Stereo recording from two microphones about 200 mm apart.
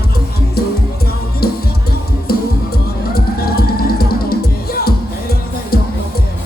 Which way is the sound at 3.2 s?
50° left (ahead or behind).